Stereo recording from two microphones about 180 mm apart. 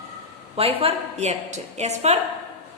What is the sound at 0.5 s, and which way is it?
Speech, 30° right (ahead or behind).